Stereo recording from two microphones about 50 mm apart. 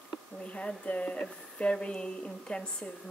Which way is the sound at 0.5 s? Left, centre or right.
Left.